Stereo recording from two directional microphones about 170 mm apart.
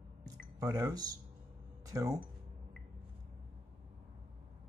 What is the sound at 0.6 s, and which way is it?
Speech, 20° right (ahead or behind).